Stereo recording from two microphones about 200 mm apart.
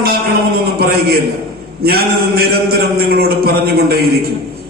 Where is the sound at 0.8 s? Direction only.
50° right (ahead or behind).